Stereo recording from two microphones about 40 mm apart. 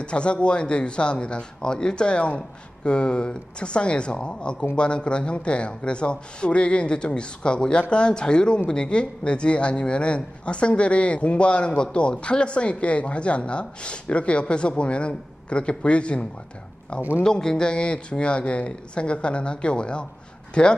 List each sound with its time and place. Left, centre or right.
0.0 s a man's voice: left
17.2 s a man's voice: centre